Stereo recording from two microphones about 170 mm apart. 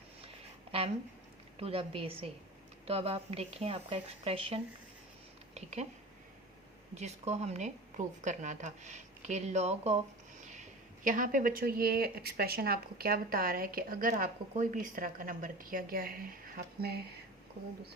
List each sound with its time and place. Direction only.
1.5 s speech: 35° right (ahead or behind)
6.9 s a woman's voice: 40° right (ahead or behind); by 17.0 s 60° right (ahead or behind)